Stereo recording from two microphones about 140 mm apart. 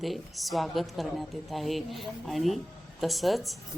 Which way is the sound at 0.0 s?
Centre (ahead or behind).